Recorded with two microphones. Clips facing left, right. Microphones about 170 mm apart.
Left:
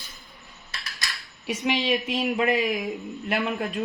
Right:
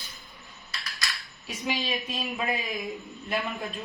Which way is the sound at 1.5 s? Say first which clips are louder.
Left 7 dB; 70° left (ahead or behind).